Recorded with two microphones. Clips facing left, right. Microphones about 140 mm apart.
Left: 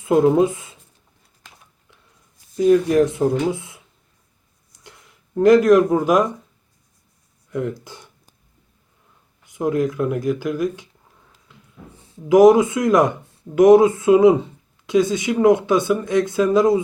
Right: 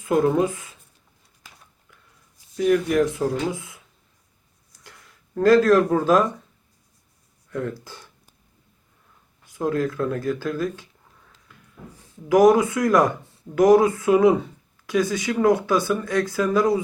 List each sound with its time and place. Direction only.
0.0 s speech: 20° left (ahead or behind)
2.6 s speech: 25° left (ahead or behind)
4.7 s a sound: 20° left (ahead or behind)
7.5 s speech: 20° left (ahead or behind)
9.4 s speech: 20° left (ahead or behind)
11.4 s a sound: 20° left (ahead or behind)
12.3 s speech: 20° left (ahead or behind)